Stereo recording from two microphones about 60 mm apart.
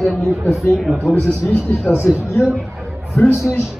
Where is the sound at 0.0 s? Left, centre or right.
Centre.